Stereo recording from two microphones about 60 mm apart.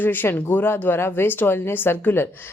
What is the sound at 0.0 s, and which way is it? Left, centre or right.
A woman's voice, left.